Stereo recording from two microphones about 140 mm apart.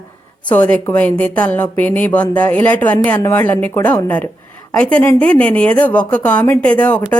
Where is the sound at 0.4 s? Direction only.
10° left (ahead or behind).